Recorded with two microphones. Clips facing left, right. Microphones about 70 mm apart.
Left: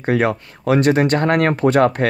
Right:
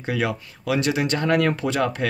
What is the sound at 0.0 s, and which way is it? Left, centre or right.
Speech, left.